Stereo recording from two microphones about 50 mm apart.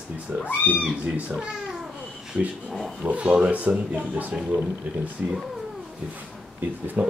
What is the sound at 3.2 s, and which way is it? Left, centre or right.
Speech, centre.